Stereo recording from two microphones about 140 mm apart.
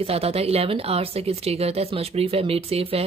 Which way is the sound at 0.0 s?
45° right (ahead or behind).